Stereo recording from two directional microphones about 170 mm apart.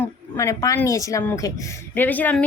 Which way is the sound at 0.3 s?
20° left (ahead or behind).